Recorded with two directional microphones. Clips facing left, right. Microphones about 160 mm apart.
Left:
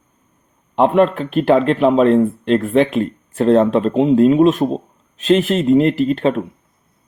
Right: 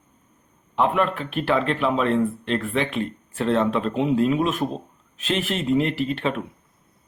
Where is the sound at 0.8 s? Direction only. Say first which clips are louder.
Left 8 dB; 35° left (ahead or behind).